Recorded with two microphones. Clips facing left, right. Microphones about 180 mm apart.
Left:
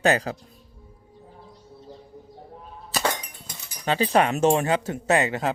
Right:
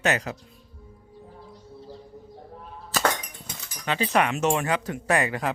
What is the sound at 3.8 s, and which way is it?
Speech, 35° left (ahead or behind).